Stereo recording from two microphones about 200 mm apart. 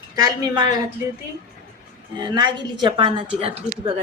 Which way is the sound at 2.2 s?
20° right (ahead or behind).